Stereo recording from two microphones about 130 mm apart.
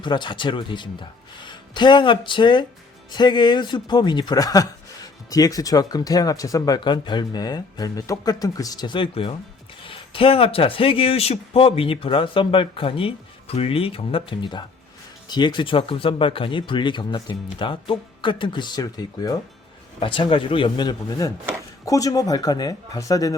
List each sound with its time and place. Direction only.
0.0 s speech: 35° left (ahead or behind)
20.0 s speech: 40° left (ahead or behind)